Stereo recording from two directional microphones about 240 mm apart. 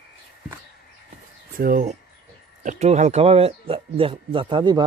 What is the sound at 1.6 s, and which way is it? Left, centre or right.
Speech, right.